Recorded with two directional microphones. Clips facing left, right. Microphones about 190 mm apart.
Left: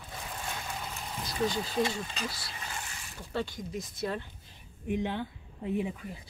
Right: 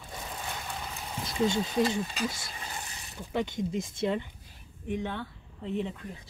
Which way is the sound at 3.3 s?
20° right (ahead or behind).